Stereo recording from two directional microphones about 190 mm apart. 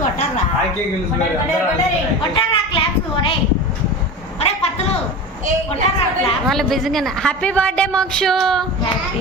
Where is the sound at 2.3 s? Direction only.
25° left (ahead or behind).